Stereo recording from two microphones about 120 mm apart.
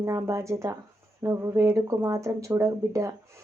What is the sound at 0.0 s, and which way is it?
Speech, 25° right (ahead or behind).